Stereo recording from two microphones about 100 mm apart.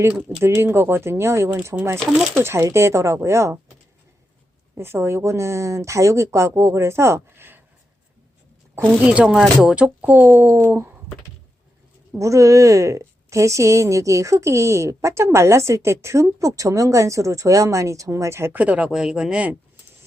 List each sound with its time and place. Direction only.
0.1 s speech: 10° right (ahead or behind)
0.4 s speech: 25° right (ahead or behind)
4.7 s speech: 25° right (ahead or behind)
9.0 s speech: 10° right (ahead or behind)
12.2 s a woman's voice: 35° right (ahead or behind); by 19.5 s 10° right (ahead or behind)